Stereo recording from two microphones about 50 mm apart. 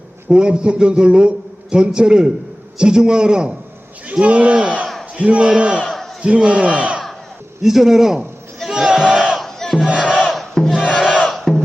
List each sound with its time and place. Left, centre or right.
0.3 s a man's voice: centre
7.6 s a man's voice: centre
8.7 s battle cry: centre
9.4 s battle cry: centre
10.2 s crowd: centre
10.7 s battle cry: centre
11.3 s music: centre